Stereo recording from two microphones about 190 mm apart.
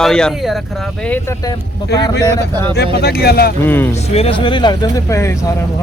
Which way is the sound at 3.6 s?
10° left (ahead or behind).